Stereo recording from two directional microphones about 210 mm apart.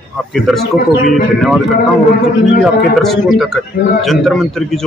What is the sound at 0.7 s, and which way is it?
Speech, 40° left (ahead or behind).